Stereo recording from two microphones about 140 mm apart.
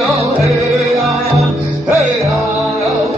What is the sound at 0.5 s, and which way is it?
Music, centre (ahead or behind).